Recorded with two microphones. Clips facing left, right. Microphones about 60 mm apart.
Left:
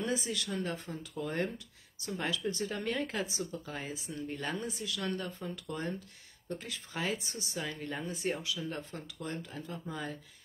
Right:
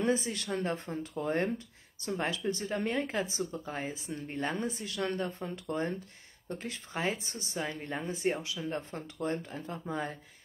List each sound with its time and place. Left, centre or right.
0.0 s a woman's voice: right